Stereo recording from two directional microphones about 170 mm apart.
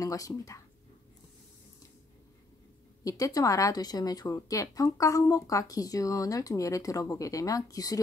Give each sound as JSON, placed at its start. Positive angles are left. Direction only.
{"t": 0.0, "sound": "a woman's voice", "side_deg": 20}
{"t": 3.0, "sound": "a woman's voice", "side_deg": 20}